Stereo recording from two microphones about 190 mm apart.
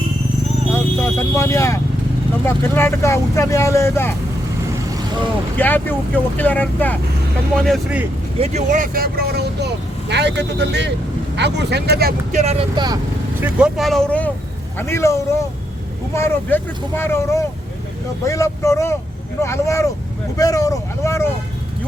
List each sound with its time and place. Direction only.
0.7 s speech: 15° left (ahead or behind)
5.5 s speech: 10° left (ahead or behind)
8.4 s speech: 40° right (ahead or behind); by 12.1 s 55° right (ahead or behind)
12.3 s speech: 35° right (ahead or behind)
13.4 s speech: 5° right (ahead or behind); by 21.2 s 15° left (ahead or behind)